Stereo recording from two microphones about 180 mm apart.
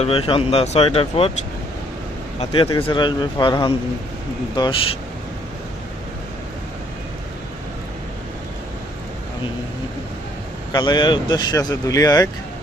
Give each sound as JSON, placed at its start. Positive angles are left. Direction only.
{"t": 0.0, "sound": "speech", "side_deg": 30}
{"t": 2.4, "sound": "speech", "side_deg": 30}
{"t": 10.7, "sound": "speech", "side_deg": 25}